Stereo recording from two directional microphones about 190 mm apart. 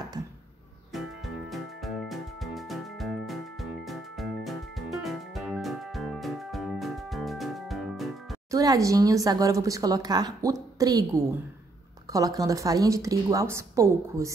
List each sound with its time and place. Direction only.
0.2 s a sound: 20° right (ahead or behind)
0.9 s music: centre (ahead or behind)
8.5 s speech: 20° right (ahead or behind)